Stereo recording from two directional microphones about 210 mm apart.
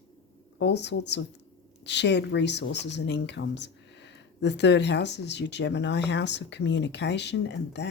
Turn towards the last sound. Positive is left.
turn(degrees=55)  # may be behind; listen again after turning